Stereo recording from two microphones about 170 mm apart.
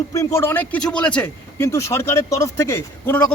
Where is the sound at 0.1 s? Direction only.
15° left (ahead or behind).